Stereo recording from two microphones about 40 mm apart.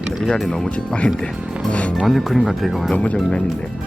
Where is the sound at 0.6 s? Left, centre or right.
Left.